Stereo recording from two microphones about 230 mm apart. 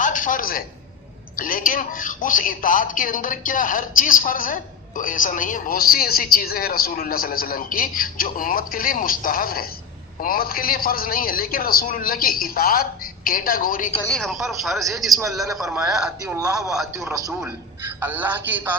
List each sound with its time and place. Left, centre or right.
0.0 s a sound: left
1.4 s speech: left
14.0 s speech: centre
16.4 s speech: centre